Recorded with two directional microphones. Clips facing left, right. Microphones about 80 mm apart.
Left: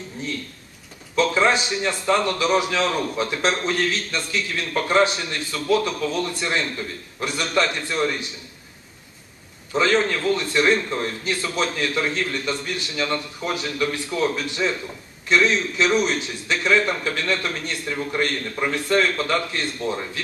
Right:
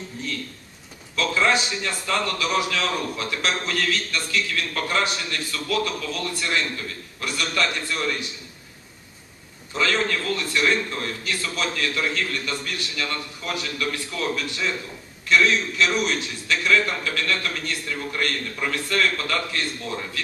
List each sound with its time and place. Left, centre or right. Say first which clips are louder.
1.1 s a man's voice: left 3 dB; left
9.8 s a man's voice: left 4 dB; left